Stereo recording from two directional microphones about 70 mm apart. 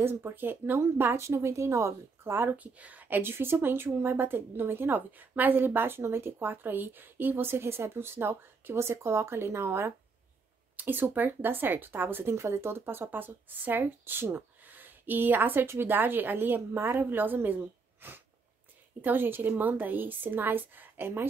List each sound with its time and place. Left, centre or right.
0.0 s speech: right
1.2 s speech: right
2.5 s speech: right